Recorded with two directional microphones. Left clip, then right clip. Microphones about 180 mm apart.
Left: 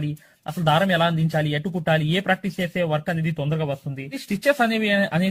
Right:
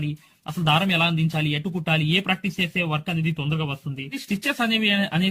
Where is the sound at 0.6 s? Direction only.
20° left (ahead or behind).